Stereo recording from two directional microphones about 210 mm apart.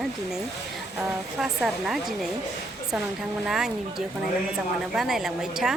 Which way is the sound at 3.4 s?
Centre (ahead or behind).